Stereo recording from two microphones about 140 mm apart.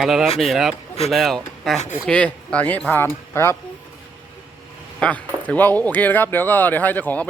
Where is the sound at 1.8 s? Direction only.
60° left (ahead or behind).